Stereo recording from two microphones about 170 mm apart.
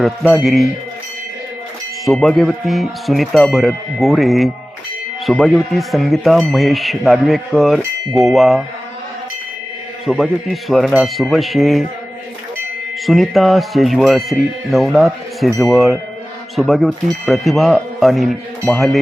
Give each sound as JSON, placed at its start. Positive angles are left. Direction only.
{"t": 0.0, "sound": "speech", "side_deg": 0}
{"t": 2.0, "sound": "speech", "side_deg": 0}
{"t": 10.1, "sound": "speech", "side_deg": 0}
{"t": 13.1, "sound": "speech", "side_deg": 0}